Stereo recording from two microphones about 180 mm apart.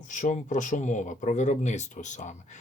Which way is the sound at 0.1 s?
45° left (ahead or behind).